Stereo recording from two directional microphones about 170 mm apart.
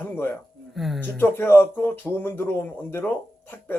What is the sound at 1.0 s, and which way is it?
Speech, 15° left (ahead or behind).